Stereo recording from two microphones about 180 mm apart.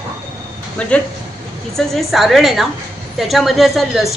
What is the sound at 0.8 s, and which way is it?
A woman's voice, 5° left (ahead or behind).